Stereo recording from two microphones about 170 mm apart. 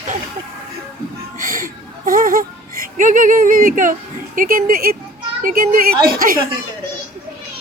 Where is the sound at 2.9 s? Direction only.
50° right (ahead or behind).